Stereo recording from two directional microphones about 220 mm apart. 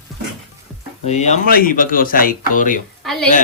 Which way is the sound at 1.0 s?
30° left (ahead or behind).